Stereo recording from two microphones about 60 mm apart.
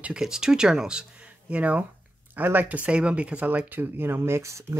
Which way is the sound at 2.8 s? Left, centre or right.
Centre.